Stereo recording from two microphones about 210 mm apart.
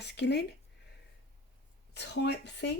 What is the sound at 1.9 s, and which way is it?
Speech, 55° left (ahead or behind).